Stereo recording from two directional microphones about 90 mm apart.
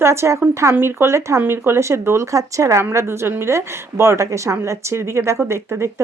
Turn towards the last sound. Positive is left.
turn(degrees=-30)  # may be behind; listen again after turning